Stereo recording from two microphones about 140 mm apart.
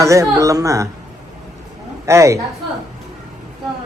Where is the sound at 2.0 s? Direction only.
20° right (ahead or behind).